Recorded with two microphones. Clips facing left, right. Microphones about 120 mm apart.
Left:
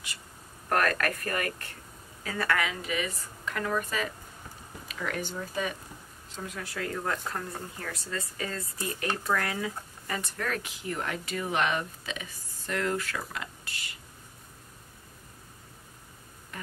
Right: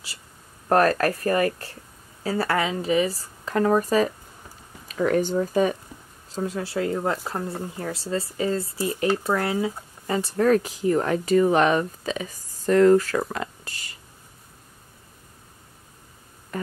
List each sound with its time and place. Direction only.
0.7 s speech: 30° right (ahead or behind)